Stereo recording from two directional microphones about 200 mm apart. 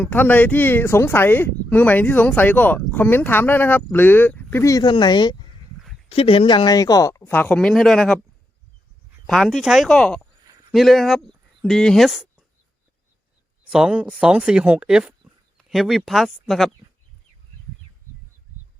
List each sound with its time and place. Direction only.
0.0 s speech: 10° left (ahead or behind)
9.2 s speech: centre (ahead or behind)
13.7 s speech: 5° right (ahead or behind)